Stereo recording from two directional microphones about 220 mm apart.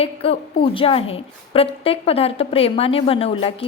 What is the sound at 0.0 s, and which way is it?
A woman's voice, 25° left (ahead or behind).